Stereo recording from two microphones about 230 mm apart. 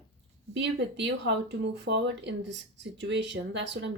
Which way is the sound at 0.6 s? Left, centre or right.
Right.